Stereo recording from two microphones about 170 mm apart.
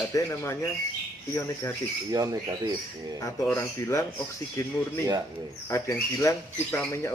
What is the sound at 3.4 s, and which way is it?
Speech, 15° left (ahead or behind).